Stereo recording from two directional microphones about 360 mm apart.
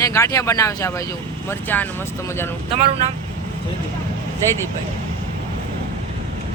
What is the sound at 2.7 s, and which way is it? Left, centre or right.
Speech, centre.